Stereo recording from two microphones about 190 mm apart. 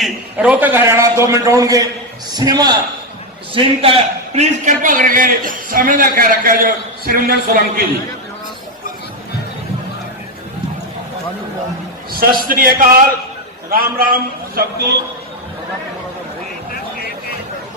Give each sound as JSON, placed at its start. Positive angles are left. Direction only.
{"t": 0.0, "sound": "a man's voice", "side_deg": -5}
{"t": 12.1, "sound": "a man's voice", "side_deg": -50}